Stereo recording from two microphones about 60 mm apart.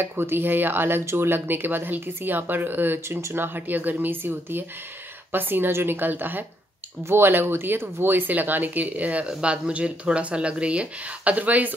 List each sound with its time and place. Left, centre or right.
0.0 s speech: right